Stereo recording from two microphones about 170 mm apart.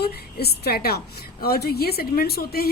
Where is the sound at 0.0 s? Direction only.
70° left (ahead or behind).